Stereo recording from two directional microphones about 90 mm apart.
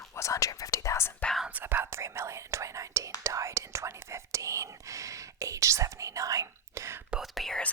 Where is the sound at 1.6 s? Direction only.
25° right (ahead or behind).